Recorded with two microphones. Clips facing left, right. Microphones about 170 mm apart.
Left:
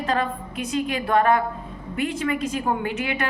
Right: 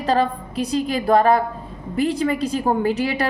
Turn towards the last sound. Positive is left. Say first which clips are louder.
# right 6 dB
turn(degrees=-35)  # may be behind; listen again after turning